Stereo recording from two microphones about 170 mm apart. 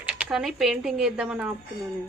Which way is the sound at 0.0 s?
5° right (ahead or behind).